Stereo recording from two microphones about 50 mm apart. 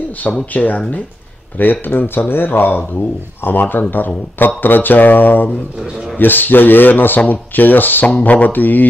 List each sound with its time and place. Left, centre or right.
0.2 s speech: left